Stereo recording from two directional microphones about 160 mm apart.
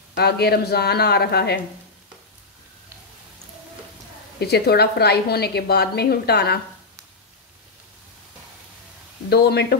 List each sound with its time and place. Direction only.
0.1 s a woman's voice: 85° left
4.4 s a woman's voice: 90° left
9.3 s a woman's voice: 90° left